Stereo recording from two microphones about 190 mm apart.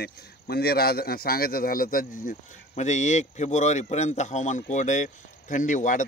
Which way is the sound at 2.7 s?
35° left (ahead or behind).